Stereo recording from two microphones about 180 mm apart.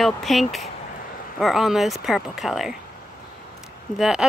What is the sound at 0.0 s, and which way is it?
Speech, centre (ahead or behind).